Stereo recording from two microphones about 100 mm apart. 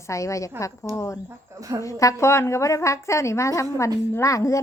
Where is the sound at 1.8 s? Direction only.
35° left (ahead or behind).